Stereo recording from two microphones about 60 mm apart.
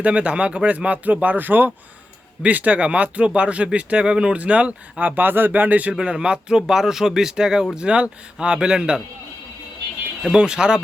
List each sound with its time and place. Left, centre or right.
0.0 s speech: right
5.9 s speech: centre
10.3 s speech: centre